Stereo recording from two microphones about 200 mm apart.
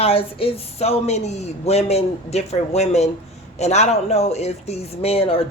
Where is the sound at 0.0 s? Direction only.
30° left (ahead or behind).